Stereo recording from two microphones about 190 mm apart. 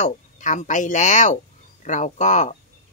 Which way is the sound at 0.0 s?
40° left (ahead or behind).